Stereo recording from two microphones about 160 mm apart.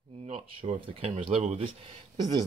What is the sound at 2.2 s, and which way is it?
Speech, 25° right (ahead or behind).